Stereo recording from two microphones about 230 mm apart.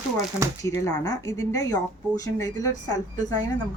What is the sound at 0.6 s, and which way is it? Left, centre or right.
Speech, centre.